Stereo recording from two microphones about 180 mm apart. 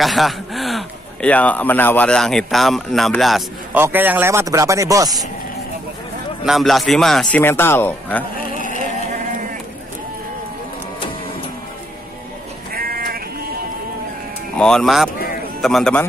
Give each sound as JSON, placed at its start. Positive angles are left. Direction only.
{"t": 0.0, "sound": "speech", "side_deg": 0}
{"t": 3.8, "sound": "speech", "side_deg": -10}
{"t": 6.4, "sound": "speech", "side_deg": 0}
{"t": 8.5, "sound": "a sound", "side_deg": 50}
{"t": 12.7, "sound": "sheep", "side_deg": -55}
{"t": 14.6, "sound": "speech", "side_deg": 5}